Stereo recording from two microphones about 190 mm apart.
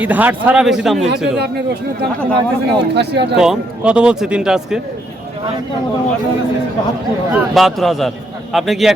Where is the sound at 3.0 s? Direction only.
60° right (ahead or behind).